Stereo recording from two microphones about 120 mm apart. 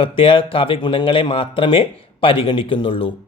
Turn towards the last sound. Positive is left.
turn(degrees=45)  # may be behind; listen again after turning